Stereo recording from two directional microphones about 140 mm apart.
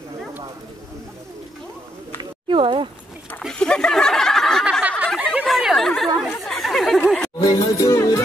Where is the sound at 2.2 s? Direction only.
35° right (ahead or behind).